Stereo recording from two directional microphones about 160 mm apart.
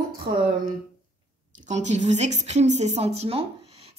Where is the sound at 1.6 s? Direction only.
45° right (ahead or behind).